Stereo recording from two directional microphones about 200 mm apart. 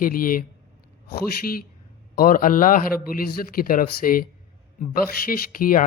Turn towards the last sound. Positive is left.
turn(degrees=45)  # may be behind; listen again after turning